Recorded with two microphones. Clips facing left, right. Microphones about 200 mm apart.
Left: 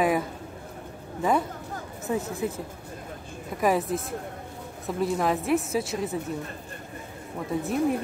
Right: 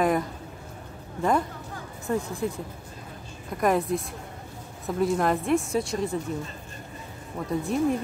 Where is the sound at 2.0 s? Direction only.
5° left (ahead or behind).